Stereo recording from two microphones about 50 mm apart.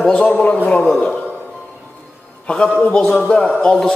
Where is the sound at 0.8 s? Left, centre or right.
Centre.